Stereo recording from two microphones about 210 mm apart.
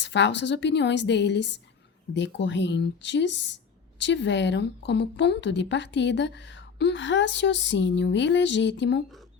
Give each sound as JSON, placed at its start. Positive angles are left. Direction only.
{"t": 0.0, "sound": "a woman's voice", "side_deg": 55}